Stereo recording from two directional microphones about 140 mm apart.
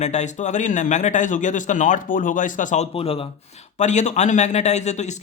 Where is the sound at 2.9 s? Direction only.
45° left (ahead or behind).